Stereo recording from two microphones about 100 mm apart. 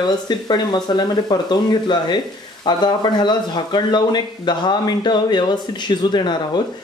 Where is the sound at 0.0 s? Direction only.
45° left (ahead or behind).